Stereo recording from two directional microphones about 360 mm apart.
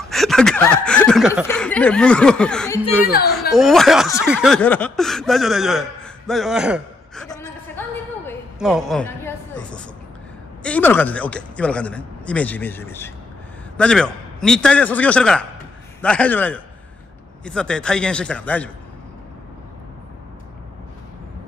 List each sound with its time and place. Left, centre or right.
0.0 s speech: centre
3.1 s a woman's voice: left
3.3 s speech: centre
8.3 s a sound: centre
10.6 s speech: centre